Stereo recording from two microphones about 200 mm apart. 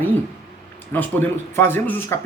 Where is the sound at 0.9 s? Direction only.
10° left (ahead or behind).